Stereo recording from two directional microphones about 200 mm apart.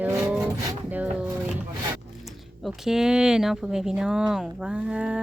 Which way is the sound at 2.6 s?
Centre (ahead or behind).